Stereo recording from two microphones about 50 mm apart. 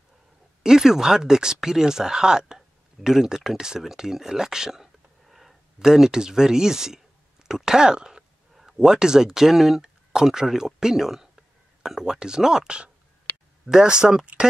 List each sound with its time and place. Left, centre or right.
0.7 s speech: centre